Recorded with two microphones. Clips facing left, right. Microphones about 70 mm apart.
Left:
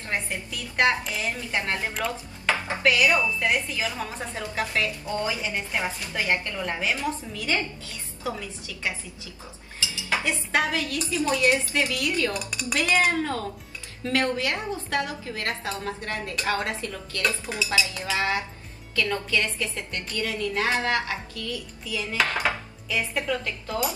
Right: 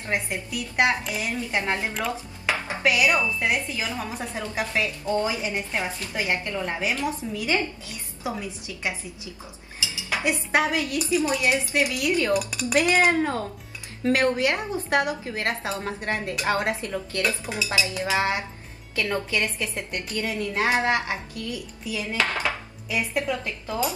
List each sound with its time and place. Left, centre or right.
0.1 s a woman's voice: centre
2.4 s dishes: centre
4.3 s a woman's voice: centre
9.8 s dishes: right
10.5 s a woman's voice: right